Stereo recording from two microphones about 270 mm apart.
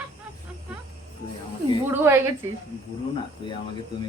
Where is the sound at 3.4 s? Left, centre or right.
Centre.